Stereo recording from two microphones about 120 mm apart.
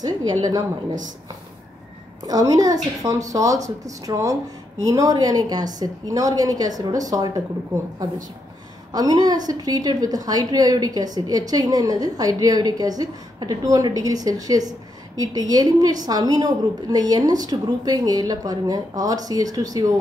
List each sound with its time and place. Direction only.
0.0 s a woman's voice: 30° right (ahead or behind)
2.2 s a woman's voice: 30° right (ahead or behind)
8.9 s a woman's voice: 30° right (ahead or behind)